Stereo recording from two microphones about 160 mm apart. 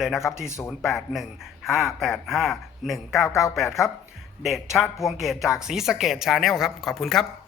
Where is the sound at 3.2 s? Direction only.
20° left (ahead or behind).